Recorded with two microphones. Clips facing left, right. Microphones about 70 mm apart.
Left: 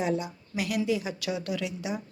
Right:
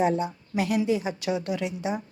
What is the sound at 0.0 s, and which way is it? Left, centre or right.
A woman's voice, right.